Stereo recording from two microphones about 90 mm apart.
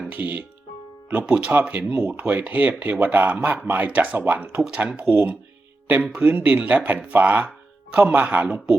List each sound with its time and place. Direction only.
0.1 s speech: 20° right (ahead or behind)